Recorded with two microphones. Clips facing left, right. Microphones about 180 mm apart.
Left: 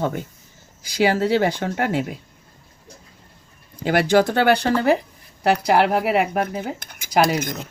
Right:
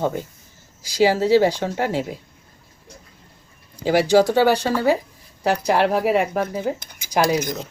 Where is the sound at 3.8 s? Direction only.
60° left (ahead or behind).